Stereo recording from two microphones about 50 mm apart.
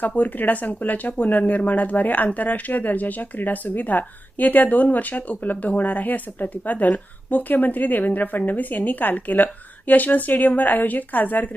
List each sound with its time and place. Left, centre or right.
0.2 s speech: left